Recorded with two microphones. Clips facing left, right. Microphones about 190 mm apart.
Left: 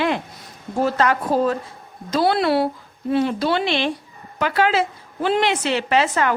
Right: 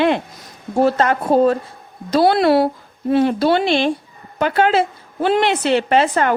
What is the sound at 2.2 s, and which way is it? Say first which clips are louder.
A woman's voice: right 4 dB; 50° right (ahead or behind).